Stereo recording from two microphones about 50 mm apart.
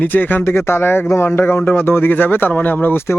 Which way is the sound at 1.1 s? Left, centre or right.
Left.